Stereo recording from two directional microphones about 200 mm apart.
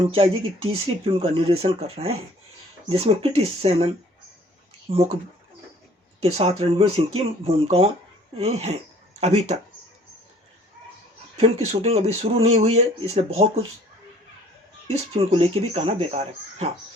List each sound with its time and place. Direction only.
0.0 s speech: 25° right (ahead or behind)
6.1 s speech: 30° right (ahead or behind)
11.3 s speech: 30° right (ahead or behind)
14.9 s speech: 30° right (ahead or behind)